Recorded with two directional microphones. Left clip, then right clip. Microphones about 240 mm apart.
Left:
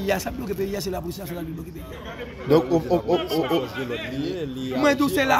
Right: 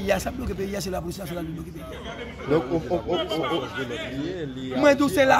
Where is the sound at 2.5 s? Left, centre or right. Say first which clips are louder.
Left 4 dB; left.